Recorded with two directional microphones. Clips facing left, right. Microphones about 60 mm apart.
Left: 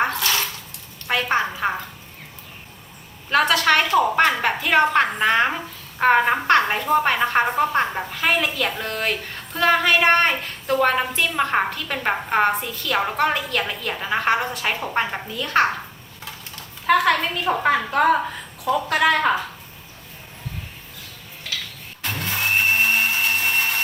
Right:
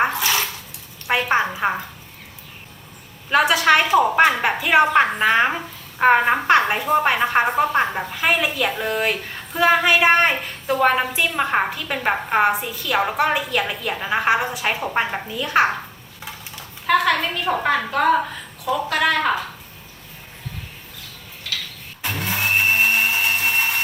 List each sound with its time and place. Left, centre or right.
0.0 s bathtub: centre
1.0 s a woman's voice: centre
3.2 s a woman's voice: centre
16.8 s a woman's voice: centre
22.0 s a sound: centre